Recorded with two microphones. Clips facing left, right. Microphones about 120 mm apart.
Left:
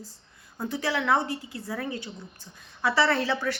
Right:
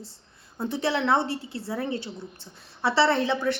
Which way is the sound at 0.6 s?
25° right (ahead or behind).